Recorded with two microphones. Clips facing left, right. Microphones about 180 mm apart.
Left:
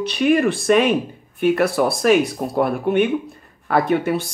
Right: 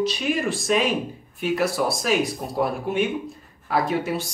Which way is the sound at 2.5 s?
60° left (ahead or behind).